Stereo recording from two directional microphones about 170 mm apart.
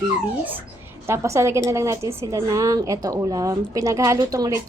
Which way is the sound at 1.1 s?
15° right (ahead or behind).